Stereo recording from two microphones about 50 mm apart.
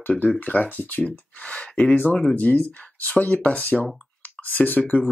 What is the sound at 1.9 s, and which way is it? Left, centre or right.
Speech, left.